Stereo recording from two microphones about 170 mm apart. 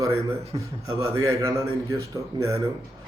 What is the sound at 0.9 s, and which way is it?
A man's voice, 20° right (ahead or behind).